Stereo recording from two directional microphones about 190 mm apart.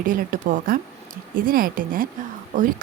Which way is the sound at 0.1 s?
45° right (ahead or behind).